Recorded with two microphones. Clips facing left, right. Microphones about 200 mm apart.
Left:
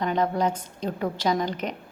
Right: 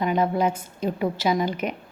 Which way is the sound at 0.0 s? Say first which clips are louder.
Right 2 dB; 10° right (ahead or behind).